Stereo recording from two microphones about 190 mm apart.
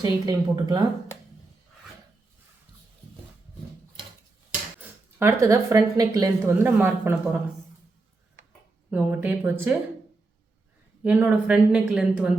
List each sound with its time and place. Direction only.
0.0 s speech: 20° right (ahead or behind)
4.8 s speech: 15° right (ahead or behind)
8.9 s speech: 5° right (ahead or behind)
11.0 s speech: 5° right (ahead or behind)